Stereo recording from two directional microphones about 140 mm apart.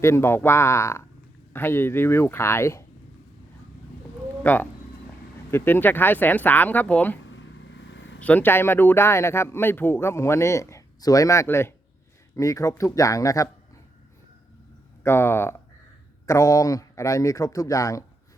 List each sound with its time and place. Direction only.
0.0 s speech: 20° left (ahead or behind)
4.4 s speech: 10° left (ahead or behind)
8.2 s speech: 10° left (ahead or behind)
15.0 s speech: 15° left (ahead or behind)